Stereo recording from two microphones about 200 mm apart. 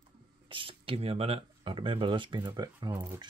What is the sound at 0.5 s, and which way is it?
Speech, 25° right (ahead or behind).